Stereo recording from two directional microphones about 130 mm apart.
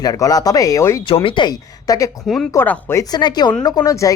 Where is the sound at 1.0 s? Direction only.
40° left (ahead or behind).